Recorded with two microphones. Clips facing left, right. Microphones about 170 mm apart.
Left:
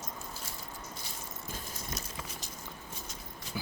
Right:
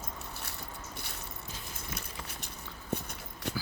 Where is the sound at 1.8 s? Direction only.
60° right (ahead or behind).